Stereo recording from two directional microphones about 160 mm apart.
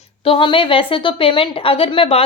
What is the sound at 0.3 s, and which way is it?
A woman's voice, 35° left (ahead or behind).